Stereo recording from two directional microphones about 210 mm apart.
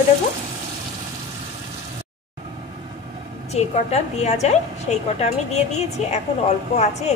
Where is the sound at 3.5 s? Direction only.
30° left (ahead or behind).